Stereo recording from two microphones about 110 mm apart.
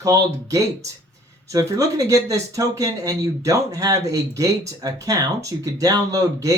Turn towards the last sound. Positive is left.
turn(degrees=-30)  # may be behind; listen again after turning